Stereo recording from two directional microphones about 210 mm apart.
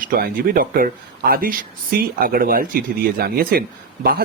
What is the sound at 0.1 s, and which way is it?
Speech, 40° right (ahead or behind).